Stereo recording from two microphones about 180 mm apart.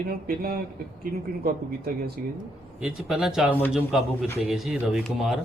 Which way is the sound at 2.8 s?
5° right (ahead or behind).